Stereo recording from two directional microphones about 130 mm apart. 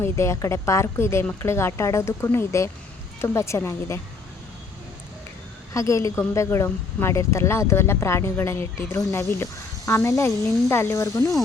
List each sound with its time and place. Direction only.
0.0 s speech: 20° left (ahead or behind)
5.7 s speech: 25° left (ahead or behind)